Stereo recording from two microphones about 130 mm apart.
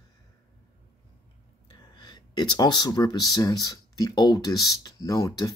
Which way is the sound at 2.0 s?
35° left (ahead or behind).